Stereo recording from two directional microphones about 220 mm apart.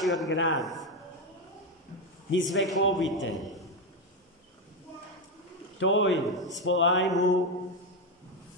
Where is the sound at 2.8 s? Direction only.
60° left (ahead or behind).